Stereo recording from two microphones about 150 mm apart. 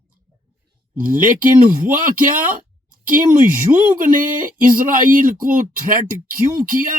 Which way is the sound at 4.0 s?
65° right (ahead or behind).